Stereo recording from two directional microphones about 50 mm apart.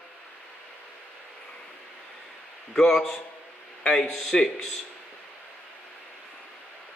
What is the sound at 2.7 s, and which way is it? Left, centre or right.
A man's voice, centre.